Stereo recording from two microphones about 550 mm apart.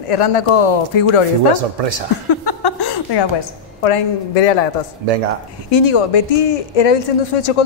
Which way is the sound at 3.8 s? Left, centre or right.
Left.